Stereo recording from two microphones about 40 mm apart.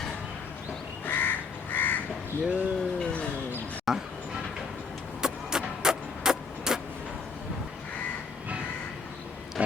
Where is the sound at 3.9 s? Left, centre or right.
Centre.